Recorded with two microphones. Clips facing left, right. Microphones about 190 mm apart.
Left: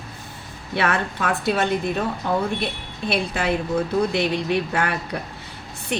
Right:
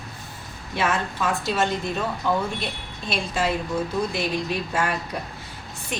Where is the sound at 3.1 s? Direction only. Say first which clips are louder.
Left 2 dB; 60° left (ahead or behind).